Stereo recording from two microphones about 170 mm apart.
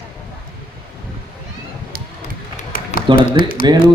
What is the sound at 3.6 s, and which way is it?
Speech, 25° right (ahead or behind).